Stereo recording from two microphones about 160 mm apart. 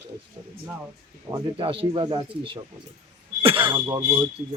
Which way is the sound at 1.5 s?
35° right (ahead or behind).